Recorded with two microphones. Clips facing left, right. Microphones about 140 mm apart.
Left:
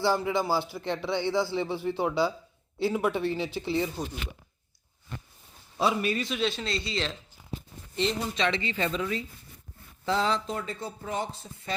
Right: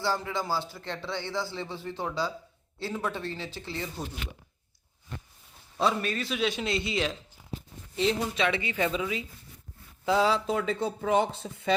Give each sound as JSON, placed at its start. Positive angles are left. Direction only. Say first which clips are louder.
{"t": 0.0, "sound": "speech", "louder": "left 4 dB", "side_deg": 15}
{"t": 5.7, "sound": "speech", "louder": "left 1 dB", "side_deg": 10}
{"t": 6.2, "sound": "speech", "louder": "right 1 dB", "side_deg": -5}
{"t": 10.6, "sound": "speech", "louder": "right 7 dB", "side_deg": -75}
{"t": 11.2, "sound": "speech", "louder": "right 6 dB", "side_deg": -60}